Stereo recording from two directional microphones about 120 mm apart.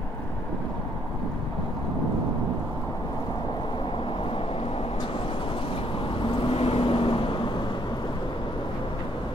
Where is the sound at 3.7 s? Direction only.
45° left (ahead or behind).